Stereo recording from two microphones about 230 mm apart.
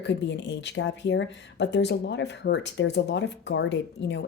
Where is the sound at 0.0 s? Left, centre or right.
Left.